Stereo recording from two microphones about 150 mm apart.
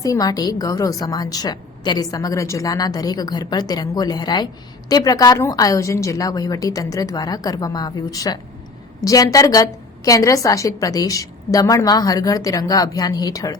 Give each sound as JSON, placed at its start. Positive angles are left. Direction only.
{"t": 0.0, "sound": "a woman's voice", "side_deg": 25}